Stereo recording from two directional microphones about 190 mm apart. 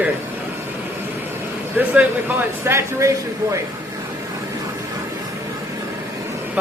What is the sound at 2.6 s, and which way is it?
Speech, 15° right (ahead or behind).